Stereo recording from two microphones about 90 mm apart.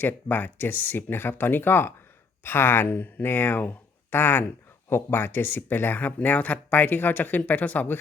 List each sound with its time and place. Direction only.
0.0 s speech: 20° left (ahead or behind)